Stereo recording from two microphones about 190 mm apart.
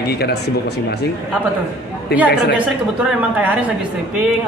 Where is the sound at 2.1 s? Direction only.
55° left (ahead or behind).